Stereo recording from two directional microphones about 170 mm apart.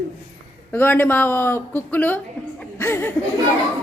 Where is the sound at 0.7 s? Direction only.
10° left (ahead or behind).